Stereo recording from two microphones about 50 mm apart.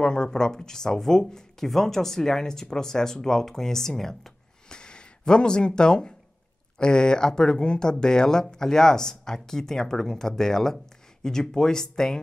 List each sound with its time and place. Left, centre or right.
0.0 s speech: centre